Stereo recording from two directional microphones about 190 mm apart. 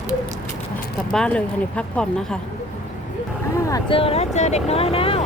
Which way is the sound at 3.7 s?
20° left (ahead or behind).